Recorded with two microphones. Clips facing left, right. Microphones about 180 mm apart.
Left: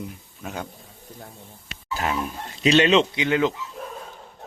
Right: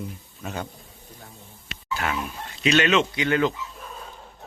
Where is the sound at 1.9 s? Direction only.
35° left (ahead or behind).